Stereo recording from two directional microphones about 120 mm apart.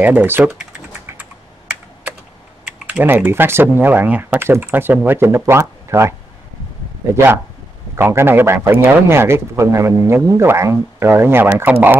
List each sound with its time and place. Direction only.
0.0 s speech: 15° right (ahead or behind)
2.6 s speech: 15° right (ahead or behind)
7.9 s a man's voice: 20° right (ahead or behind)